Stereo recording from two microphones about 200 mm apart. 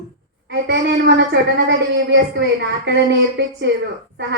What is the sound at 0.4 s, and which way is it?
A woman's voice, 60° right (ahead or behind).